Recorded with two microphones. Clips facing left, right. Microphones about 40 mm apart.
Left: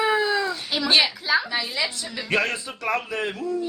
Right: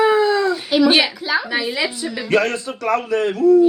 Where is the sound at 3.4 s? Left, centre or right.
Right.